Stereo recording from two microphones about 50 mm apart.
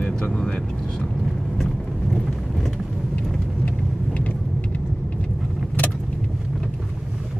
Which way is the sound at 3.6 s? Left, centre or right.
Left.